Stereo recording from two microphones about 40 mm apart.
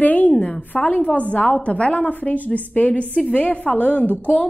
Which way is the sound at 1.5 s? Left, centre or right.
Left.